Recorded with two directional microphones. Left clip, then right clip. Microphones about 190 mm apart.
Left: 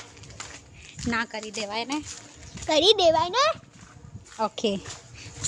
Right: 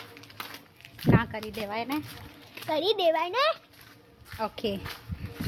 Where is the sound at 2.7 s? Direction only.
50° left (ahead or behind).